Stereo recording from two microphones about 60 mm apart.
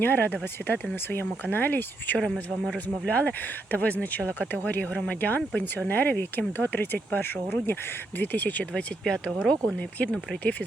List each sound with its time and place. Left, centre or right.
0.0 s speech: left
8.7 s speech: centre